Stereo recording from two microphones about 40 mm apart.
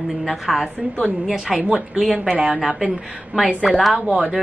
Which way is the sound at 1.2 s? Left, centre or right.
Centre.